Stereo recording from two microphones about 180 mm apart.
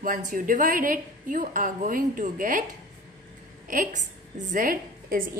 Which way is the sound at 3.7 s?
50° right (ahead or behind).